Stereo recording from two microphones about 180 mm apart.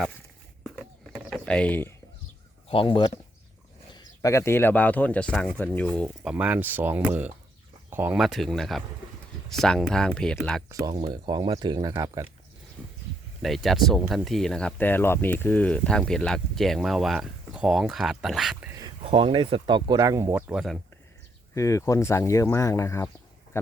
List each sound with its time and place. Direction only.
0.6 s a sound: centre (ahead or behind)
2.6 s speech: 30° left (ahead or behind)
3.9 s speech: 20° left (ahead or behind)
6.2 s speech: 5° right (ahead or behind)
10.7 s speech: 20° right (ahead or behind)
13.4 s speech: centre (ahead or behind)
19.0 s speech: 30° right (ahead or behind)
20.5 s speech: centre (ahead or behind)
21.5 s speech: 15° left (ahead or behind)